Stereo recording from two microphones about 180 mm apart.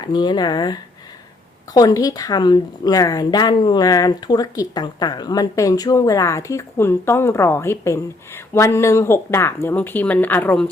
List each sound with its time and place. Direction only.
0.0 s a woman's voice: 25° left (ahead or behind); by 10.7 s 10° left (ahead or behind)